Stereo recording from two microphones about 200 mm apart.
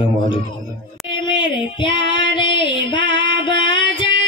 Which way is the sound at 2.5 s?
65° right (ahead or behind).